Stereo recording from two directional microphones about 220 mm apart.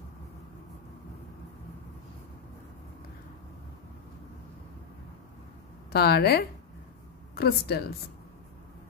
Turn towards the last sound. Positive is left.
turn(degrees=45)  # may be behind; listen again after turning